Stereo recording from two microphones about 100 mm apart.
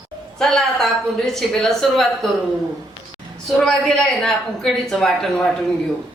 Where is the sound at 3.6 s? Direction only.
5° left (ahead or behind).